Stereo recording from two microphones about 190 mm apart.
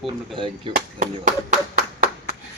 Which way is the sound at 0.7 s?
25° right (ahead or behind).